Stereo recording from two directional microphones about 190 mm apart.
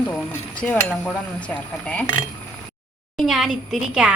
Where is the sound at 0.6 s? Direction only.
5° left (ahead or behind).